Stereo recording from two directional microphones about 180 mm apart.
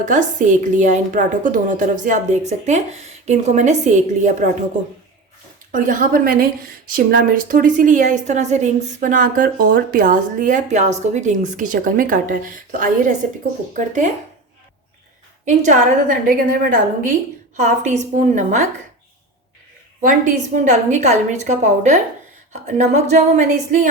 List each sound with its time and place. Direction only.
0.0 s a woman's voice: 45° right (ahead or behind)
5.7 s a woman's voice: 50° right (ahead or behind)
13.7 s a woman's voice: 45° right (ahead or behind)
15.4 s a woman's voice: 45° right (ahead or behind)
20.0 s a woman's voice: 45° right (ahead or behind)